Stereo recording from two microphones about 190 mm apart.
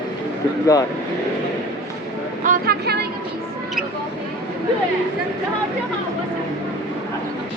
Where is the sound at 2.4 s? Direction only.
50° right (ahead or behind).